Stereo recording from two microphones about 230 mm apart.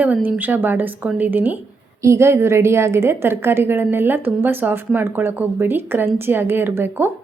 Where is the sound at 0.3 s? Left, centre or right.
Centre.